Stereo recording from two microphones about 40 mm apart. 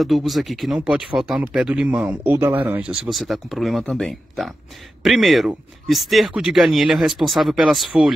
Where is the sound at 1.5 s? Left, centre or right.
Centre.